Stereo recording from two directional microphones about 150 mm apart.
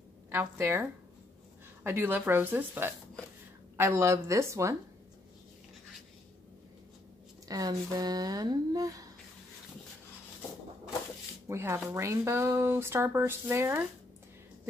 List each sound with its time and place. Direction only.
0.3 s speech: 15° right (ahead or behind)
7.4 s speech: 25° right (ahead or behind)
11.4 s speech: 15° right (ahead or behind)